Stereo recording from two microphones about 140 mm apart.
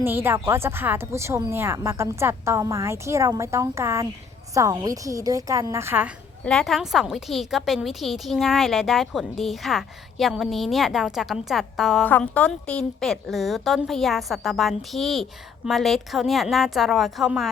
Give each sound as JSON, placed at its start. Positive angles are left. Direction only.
{"t": 0.0, "sound": "speech", "side_deg": -15}
{"t": 6.4, "sound": "a woman's voice", "side_deg": 5}
{"t": 12.0, "sound": "a woman's voice", "side_deg": 10}